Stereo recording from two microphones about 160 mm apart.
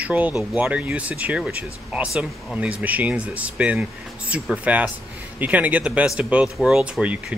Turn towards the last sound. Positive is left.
turn(degrees=-5)  # may be behind; listen again after turning